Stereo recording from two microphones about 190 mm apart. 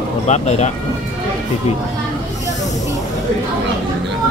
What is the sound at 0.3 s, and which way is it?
Speech, 35° left (ahead or behind).